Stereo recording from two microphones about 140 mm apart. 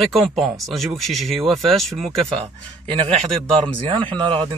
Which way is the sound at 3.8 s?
40° right (ahead or behind).